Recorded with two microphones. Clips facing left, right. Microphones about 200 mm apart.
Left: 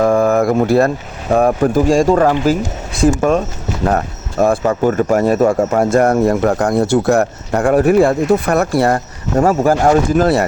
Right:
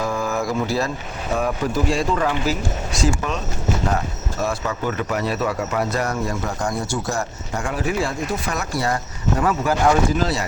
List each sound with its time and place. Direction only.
0.0 s speech: 55° left (ahead or behind)
9.4 s speech: 45° left (ahead or behind)